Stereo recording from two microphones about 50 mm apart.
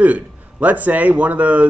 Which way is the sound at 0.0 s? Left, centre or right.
Right.